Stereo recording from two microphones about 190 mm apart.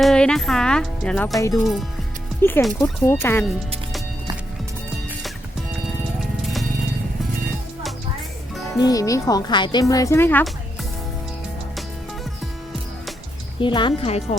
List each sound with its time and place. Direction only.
0.0 s speech: 5° left (ahead or behind)
1.4 s speech: 15° left (ahead or behind)
8.8 s speech: 20° left (ahead or behind)
13.6 s speech: 25° left (ahead or behind)